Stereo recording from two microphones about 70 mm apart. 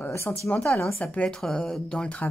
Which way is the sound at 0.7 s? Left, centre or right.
Centre.